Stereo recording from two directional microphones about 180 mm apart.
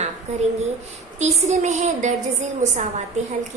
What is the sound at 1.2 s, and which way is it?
Speech, 40° right (ahead or behind).